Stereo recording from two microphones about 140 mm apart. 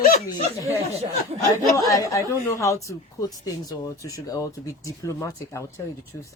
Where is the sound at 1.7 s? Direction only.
25° left (ahead or behind).